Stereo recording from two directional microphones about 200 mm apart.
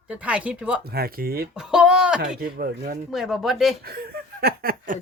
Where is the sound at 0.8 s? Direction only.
50° right (ahead or behind).